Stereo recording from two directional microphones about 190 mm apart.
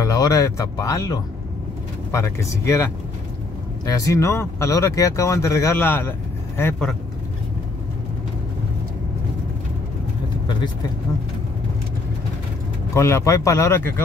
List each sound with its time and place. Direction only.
0.0 s speech: 20° left (ahead or behind)
12.9 s speech: 15° left (ahead or behind)